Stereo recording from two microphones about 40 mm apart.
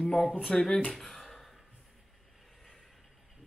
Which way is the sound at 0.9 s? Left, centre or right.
Centre.